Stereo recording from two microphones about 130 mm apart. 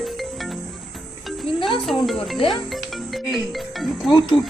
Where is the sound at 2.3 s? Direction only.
40° left (ahead or behind).